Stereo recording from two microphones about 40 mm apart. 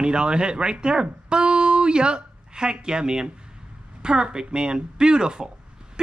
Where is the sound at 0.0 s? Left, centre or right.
Right.